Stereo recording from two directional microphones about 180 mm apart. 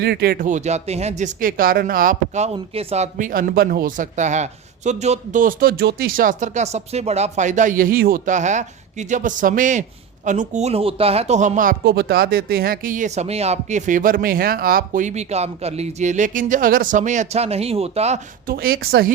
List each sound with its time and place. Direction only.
0.0 s speech: 60° right (ahead or behind); by 18.2 s 35° right (ahead or behind)
18.4 s a woman's voice: 55° right (ahead or behind)